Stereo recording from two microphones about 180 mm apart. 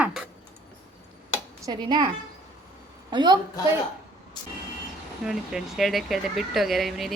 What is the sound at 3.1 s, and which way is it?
Speech, 25° right (ahead or behind).